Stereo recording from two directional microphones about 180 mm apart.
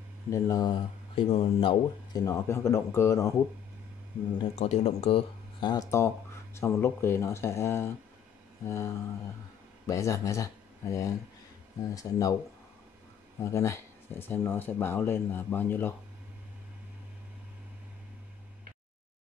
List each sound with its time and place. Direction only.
0.3 s speech: 20° left (ahead or behind)
2.2 s speech: 15° left (ahead or behind)
4.4 s speech: 35° left (ahead or behind); by 12.4 s 20° left (ahead or behind)
13.4 s speech: 15° left (ahead or behind)